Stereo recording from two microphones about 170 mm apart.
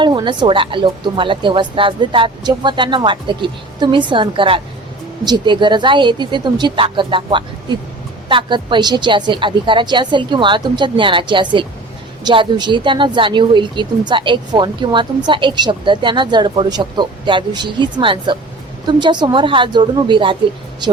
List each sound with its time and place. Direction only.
0.0 s speech: 25° right (ahead or behind)